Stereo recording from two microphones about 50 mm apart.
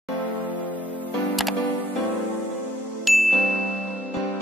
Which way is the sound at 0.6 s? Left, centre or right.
Left.